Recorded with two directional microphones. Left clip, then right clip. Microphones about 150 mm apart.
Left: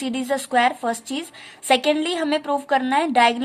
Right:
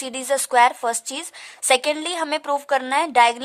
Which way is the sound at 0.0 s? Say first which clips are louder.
Right 1 dB; 40° right (ahead or behind).